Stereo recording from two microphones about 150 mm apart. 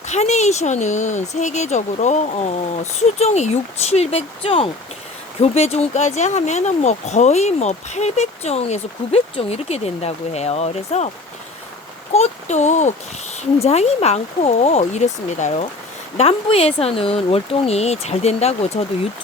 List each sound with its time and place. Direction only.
0.1 s speech: 50° left (ahead or behind)
12.1 s speech: 45° left (ahead or behind)